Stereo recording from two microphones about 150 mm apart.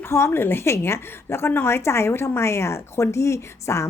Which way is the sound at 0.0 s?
20° left (ahead or behind).